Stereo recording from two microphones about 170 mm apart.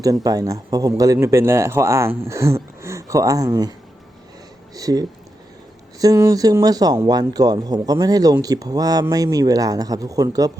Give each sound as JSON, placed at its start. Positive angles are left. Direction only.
{"t": 0.0, "sound": "speech", "side_deg": -20}